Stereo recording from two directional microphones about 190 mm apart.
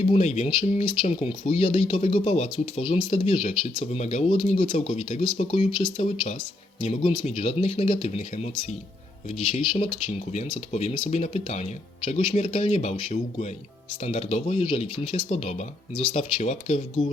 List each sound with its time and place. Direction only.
0.0 s speech: 35° left (ahead or behind)
9.5 s speech: 30° left (ahead or behind)